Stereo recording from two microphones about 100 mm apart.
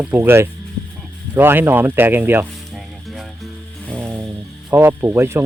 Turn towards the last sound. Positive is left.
turn(degrees=-25)  # may be behind; listen again after turning